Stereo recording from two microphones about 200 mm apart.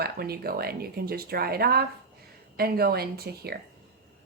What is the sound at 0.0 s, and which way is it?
Speech, 50° right (ahead or behind).